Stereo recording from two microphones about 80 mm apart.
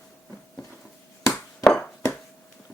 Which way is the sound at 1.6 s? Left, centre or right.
Centre.